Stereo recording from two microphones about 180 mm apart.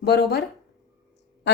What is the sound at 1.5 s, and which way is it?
Speech, 75° left (ahead or behind).